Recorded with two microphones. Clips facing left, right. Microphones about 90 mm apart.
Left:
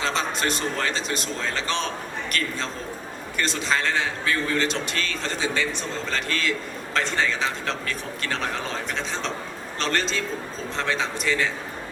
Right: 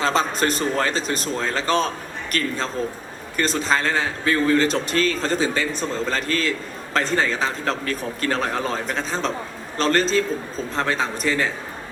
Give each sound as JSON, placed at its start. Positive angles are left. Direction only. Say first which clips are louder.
{"t": 0.0, "sound": "a man's voice", "louder": "right 5 dB", "side_deg": -40}